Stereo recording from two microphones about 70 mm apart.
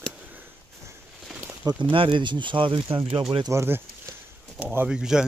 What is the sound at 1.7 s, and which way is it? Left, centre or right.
Speech, right.